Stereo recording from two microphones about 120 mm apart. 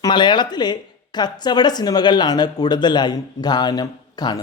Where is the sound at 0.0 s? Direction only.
40° left (ahead or behind).